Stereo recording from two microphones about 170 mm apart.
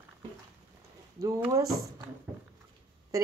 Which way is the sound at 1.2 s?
20° right (ahead or behind).